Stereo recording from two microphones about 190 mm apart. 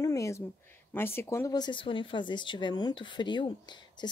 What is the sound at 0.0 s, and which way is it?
Speech, 15° left (ahead or behind).